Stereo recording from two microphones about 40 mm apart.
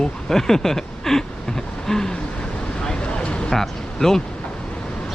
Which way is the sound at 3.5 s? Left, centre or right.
Centre.